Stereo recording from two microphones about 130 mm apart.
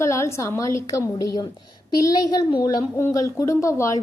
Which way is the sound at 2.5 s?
30° left (ahead or behind).